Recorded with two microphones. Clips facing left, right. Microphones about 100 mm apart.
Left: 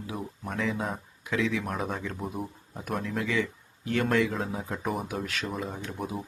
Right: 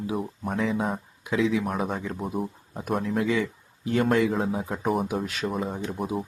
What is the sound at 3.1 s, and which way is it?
Speech, 20° right (ahead or behind).